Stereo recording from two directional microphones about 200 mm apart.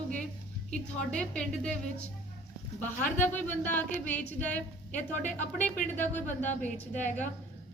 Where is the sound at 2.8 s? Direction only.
10° left (ahead or behind).